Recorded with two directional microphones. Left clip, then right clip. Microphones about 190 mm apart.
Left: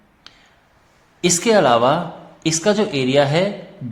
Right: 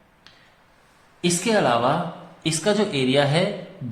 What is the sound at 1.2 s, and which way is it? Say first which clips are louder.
A woman's voice: left 6 dB; 40° left (ahead or behind).